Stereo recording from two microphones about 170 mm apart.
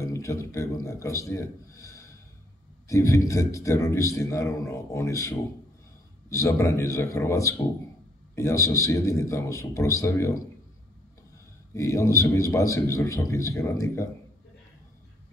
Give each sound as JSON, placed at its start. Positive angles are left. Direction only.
{"t": 0.0, "sound": "a man's voice", "side_deg": 20}
{"t": 11.7, "sound": "a man's voice", "side_deg": 15}